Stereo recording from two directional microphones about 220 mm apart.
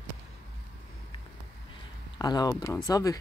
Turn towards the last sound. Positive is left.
turn(degrees=15)  # may be behind; listen again after turning